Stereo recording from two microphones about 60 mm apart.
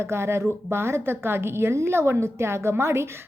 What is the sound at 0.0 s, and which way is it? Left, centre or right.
A woman's voice, right.